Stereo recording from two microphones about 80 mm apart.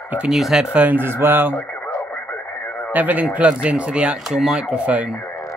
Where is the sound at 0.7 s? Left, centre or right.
Right.